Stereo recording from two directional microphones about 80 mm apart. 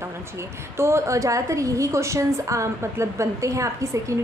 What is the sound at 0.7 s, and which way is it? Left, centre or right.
A woman's voice, right.